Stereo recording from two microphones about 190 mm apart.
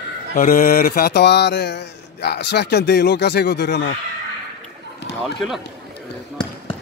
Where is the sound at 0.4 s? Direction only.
50° left (ahead or behind).